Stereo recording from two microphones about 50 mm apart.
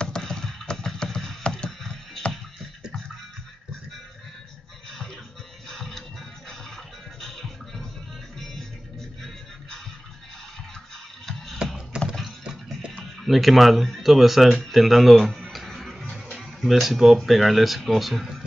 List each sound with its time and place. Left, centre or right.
0.0 s music: centre
1.8 s a sound: centre
5.7 s music: centre
7.2 s music: centre
11.5 s computer keyboard: centre
13.0 s speech: centre
16.1 s a sound: centre
17.2 s speech: centre